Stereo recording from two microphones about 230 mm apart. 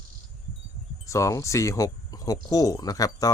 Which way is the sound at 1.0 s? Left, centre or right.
Centre.